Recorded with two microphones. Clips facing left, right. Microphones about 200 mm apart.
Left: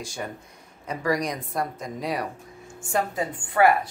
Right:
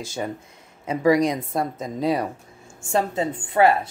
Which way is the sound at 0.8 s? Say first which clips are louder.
Right 7 dB; 25° right (ahead or behind).